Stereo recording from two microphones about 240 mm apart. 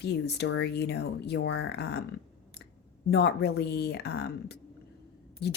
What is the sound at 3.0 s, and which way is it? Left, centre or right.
Speech, left.